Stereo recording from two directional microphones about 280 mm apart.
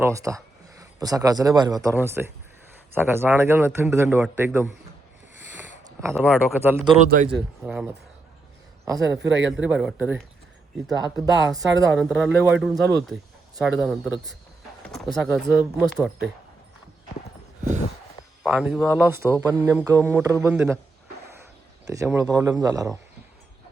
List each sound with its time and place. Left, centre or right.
0.0 s speech: centre
5.5 s a sound: centre
6.1 s speech: centre
6.9 s speech: right
7.3 s a man's voice: centre
18.4 s speech: centre
21.8 s speech: centre